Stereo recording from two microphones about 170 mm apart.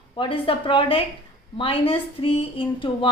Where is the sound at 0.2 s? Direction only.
30° left (ahead or behind).